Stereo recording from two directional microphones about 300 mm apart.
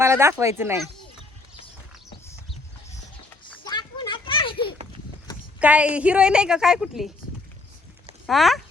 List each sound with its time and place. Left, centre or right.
0.0 s speech: centre
3.4 s a sound: centre
5.5 s a woman's voice: centre
8.3 s a woman's voice: centre